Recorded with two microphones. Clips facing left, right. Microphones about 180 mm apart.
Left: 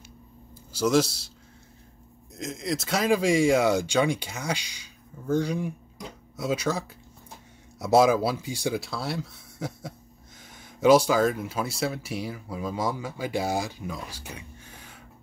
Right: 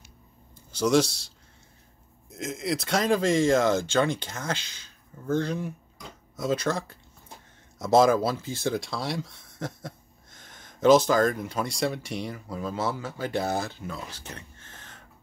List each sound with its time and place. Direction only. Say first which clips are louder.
0.7 s speech: even; 5° left (ahead or behind)
2.3 s speech: right 1 dB; centre (ahead or behind)